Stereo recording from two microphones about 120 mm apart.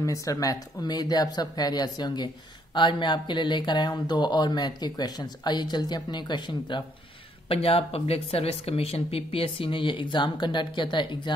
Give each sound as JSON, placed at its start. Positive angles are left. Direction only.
{"t": 0.0, "sound": "speech", "side_deg": 30}
{"t": 7.4, "sound": "speech", "side_deg": 55}